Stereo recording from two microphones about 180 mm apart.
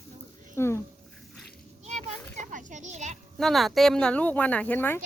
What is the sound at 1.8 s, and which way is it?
Children playing, 40° right (ahead or behind).